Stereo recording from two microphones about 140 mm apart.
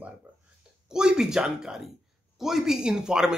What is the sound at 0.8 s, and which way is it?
A man's voice, 5° right (ahead or behind).